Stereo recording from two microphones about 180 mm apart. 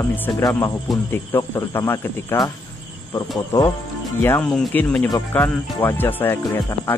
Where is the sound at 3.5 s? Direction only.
15° left (ahead or behind).